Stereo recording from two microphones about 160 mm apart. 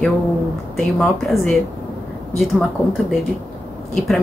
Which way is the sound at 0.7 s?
Centre (ahead or behind).